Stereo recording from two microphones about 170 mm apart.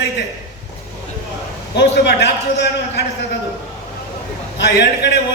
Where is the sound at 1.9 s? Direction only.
85° left.